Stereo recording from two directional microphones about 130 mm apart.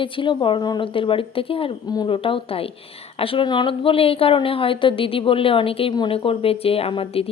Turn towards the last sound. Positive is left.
turn(degrees=45)  # may be behind; listen again after turning